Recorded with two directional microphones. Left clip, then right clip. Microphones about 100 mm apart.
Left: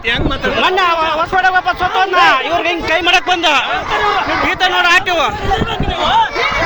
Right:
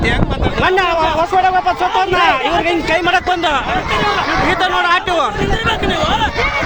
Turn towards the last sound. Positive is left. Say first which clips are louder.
# left 2 dB
turn(degrees=0)  # may be behind; listen again after turning